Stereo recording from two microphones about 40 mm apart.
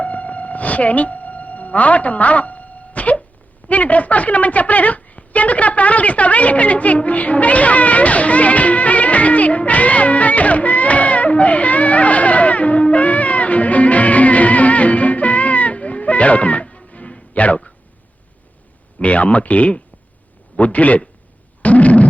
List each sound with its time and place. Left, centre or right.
0.0 s music: left
3.7 s a woman's voice: left
18.9 s speech: left
21.6 s a sound: left